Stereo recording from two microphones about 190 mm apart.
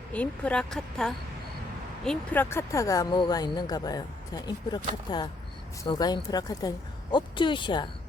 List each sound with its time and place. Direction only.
0.1 s speech: 5° left (ahead or behind); by 7.9 s 25° left (ahead or behind)